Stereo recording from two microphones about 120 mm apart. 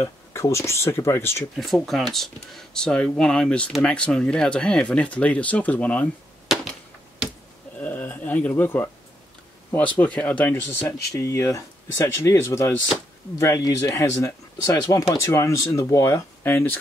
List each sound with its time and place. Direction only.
0.0 s speech: 25° left (ahead or behind)
1.6 s speech: centre (ahead or behind)
7.8 s a sound: 15° left (ahead or behind)
9.7 s speech: 15° left (ahead or behind)